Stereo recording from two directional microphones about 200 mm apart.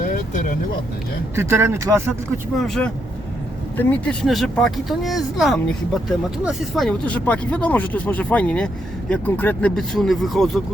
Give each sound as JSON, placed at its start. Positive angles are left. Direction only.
{"t": 0.0, "sound": "vehicle", "side_deg": 40}
{"t": 1.4, "sound": "speech", "side_deg": -10}
{"t": 2.6, "sound": "speech", "side_deg": 0}